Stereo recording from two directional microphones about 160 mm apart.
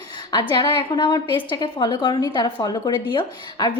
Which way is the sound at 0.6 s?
25° left (ahead or behind).